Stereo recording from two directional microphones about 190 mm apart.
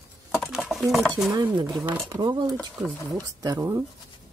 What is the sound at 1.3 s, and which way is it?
Speech, 25° right (ahead or behind).